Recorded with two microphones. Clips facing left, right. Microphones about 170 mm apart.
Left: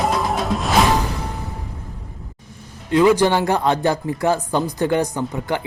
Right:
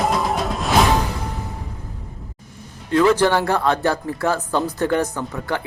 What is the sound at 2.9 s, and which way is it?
Speech, 15° left (ahead or behind).